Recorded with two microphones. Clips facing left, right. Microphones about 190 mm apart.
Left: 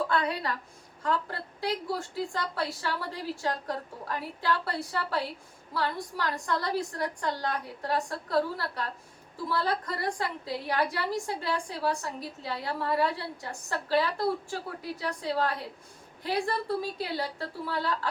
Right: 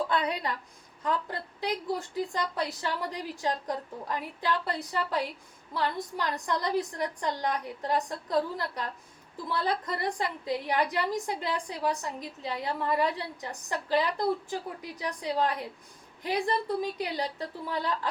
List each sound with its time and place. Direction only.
0.1 s a woman's voice: 20° right (ahead or behind)